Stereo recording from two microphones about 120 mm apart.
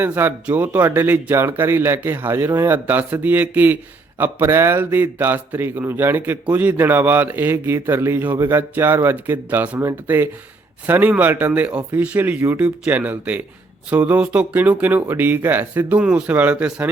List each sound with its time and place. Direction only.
0.0 s a man's voice: 15° right (ahead or behind)